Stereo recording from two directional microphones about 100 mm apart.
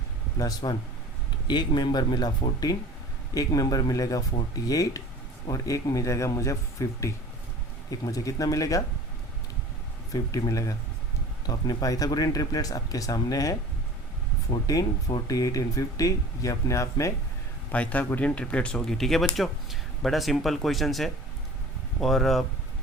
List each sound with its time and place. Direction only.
0.3 s speech: 40° left (ahead or behind)
10.1 s speech: 35° left (ahead or behind)
14.7 s speech: 35° left (ahead or behind)
17.7 s speech: 15° left (ahead or behind)